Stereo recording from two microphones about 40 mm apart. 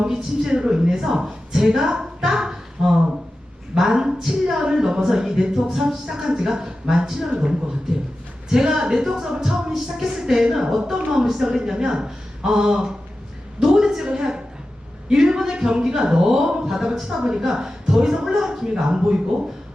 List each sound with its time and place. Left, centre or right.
0.0 s a man's voice: centre
0.9 s music: centre
3.8 s music: centre